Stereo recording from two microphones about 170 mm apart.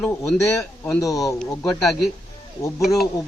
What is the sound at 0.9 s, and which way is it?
Speech, 15° left (ahead or behind).